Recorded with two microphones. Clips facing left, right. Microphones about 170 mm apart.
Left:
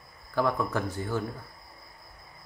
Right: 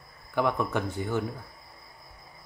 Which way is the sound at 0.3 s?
20° right (ahead or behind).